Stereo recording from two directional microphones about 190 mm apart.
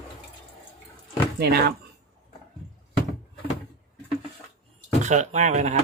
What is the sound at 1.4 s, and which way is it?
Speech, 60° right (ahead or behind).